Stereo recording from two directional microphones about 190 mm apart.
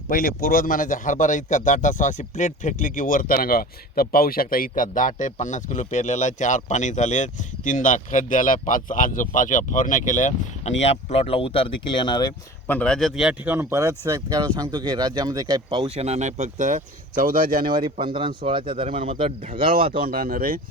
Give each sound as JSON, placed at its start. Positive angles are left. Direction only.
{"t": 0.1, "sound": "speech", "side_deg": 50}
{"t": 12.6, "sound": "speech", "side_deg": 5}
{"t": 16.0, "sound": "speech", "side_deg": -35}
{"t": 17.7, "sound": "speech", "side_deg": -25}
{"t": 20.0, "sound": "speech", "side_deg": -50}